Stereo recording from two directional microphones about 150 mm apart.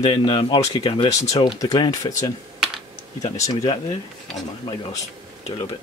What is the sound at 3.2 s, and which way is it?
Speech, 20° left (ahead or behind).